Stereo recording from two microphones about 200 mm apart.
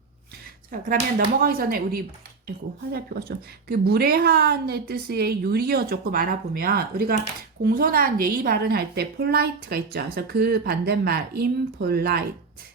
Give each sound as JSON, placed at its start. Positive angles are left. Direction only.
{"t": 0.7, "sound": "a woman's voice", "side_deg": -40}